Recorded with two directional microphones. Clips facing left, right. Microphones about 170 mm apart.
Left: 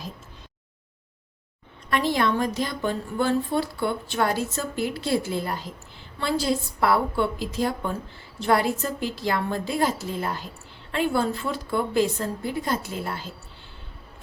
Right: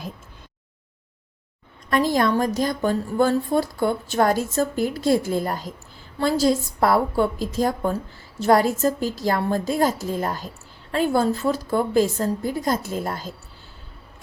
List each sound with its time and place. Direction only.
1.9 s a woman's voice: 40° right (ahead or behind)